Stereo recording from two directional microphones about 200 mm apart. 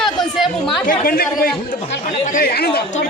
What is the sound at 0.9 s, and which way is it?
Speech, 45° left (ahead or behind).